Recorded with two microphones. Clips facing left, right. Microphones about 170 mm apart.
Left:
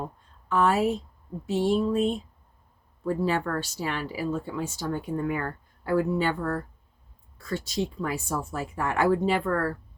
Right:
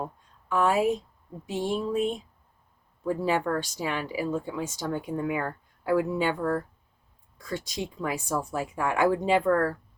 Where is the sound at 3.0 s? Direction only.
15° right (ahead or behind).